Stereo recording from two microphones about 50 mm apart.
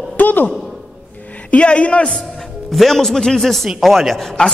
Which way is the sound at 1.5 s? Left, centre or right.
Left.